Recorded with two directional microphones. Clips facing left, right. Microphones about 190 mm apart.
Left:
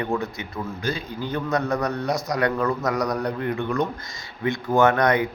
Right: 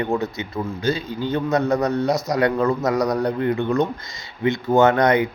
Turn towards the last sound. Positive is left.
turn(degrees=-20)  # may be behind; listen again after turning